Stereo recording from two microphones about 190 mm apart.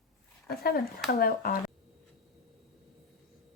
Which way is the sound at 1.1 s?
50° left (ahead or behind).